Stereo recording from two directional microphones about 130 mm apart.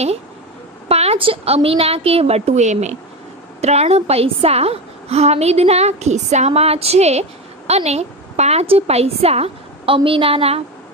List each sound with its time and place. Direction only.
0.8 s a woman's voice: 50° right (ahead or behind)